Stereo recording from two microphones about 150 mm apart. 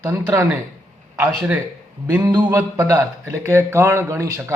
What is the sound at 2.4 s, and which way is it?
Speech, 10° right (ahead or behind).